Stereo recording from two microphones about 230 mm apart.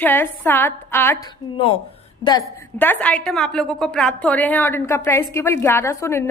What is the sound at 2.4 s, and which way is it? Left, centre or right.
A woman's voice, centre.